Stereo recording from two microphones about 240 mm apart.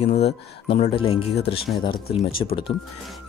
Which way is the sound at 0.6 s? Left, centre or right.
Left.